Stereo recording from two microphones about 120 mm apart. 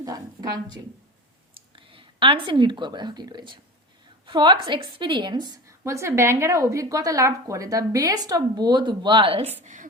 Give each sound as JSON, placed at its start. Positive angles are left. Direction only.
{"t": 0.0, "sound": "a woman's voice", "side_deg": -30}
{"t": 1.5, "sound": "a woman's voice", "side_deg": -45}
{"t": 9.6, "sound": "a woman's voice", "side_deg": -90}